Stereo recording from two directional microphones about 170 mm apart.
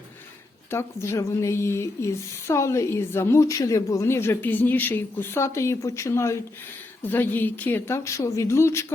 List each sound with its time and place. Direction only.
0.7 s a woman's voice: 15° left (ahead or behind)